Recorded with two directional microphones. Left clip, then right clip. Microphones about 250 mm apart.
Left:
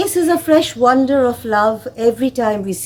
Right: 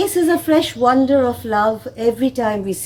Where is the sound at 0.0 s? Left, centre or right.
Centre.